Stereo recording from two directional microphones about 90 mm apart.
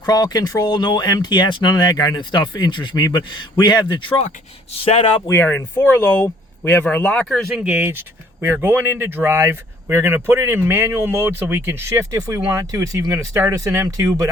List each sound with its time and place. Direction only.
0.1 s speech: 45° left (ahead or behind)
5.3 s speech: 20° left (ahead or behind)
7.5 s speech: 15° right (ahead or behind)
7.9 s speech: 25° right (ahead or behind)